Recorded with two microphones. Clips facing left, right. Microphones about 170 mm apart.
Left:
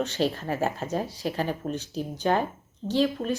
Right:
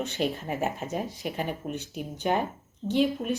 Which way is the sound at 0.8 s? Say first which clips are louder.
Left 3 dB; 35° left (ahead or behind).